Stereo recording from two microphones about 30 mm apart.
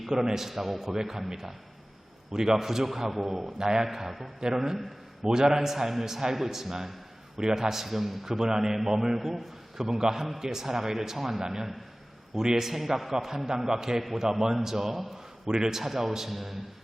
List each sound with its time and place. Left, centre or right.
0.1 s a man's voice: centre
2.3 s a man's voice: right
3.6 s a man's voice: right
3.8 s a man's voice: centre
7.7 s a man's voice: centre
8.3 s a man's voice: centre
12.5 s a man's voice: centre
15.4 s a man's voice: right
15.8 s a man's voice: centre